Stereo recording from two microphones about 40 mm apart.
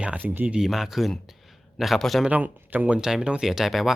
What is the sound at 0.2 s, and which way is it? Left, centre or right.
Speech, right.